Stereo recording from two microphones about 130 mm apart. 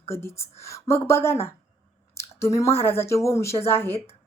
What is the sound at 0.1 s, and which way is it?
Speech, 20° left (ahead or behind).